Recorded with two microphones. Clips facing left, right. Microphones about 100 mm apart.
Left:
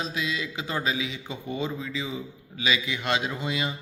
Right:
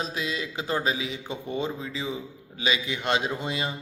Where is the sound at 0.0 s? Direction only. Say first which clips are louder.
Even; 35° right (ahead or behind).